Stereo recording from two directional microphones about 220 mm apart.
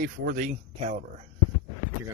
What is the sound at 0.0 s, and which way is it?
Speech, 40° right (ahead or behind).